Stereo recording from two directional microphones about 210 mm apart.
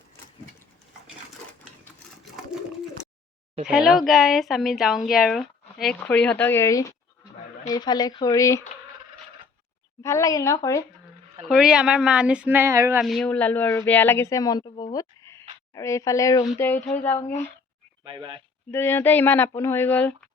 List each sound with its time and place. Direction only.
3.7 s speech: centre (ahead or behind); by 8.6 s 15° left (ahead or behind)
10.0 s speech: 15° left (ahead or behind)
11.4 s speech: 5° right (ahead or behind)
13.0 s speech: centre (ahead or behind)
18.0 s speech: 25° right (ahead or behind)
18.7 s speech: 10° left (ahead or behind)